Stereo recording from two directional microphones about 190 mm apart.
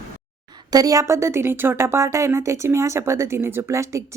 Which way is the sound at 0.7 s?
20° right (ahead or behind).